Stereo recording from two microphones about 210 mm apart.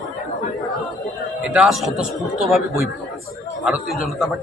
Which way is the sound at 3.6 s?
5° right (ahead or behind).